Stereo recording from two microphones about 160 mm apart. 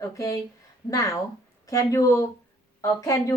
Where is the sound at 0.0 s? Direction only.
20° left (ahead or behind).